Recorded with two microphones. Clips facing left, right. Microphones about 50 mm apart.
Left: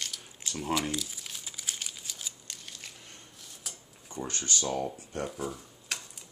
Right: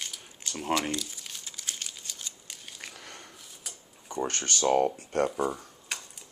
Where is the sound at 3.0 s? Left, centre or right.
Right.